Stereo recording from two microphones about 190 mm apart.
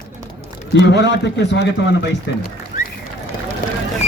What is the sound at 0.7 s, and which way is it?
A man's voice, 65° left (ahead or behind).